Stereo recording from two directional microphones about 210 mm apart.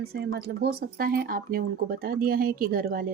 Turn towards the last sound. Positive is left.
turn(degrees=-45)  # may be behind; listen again after turning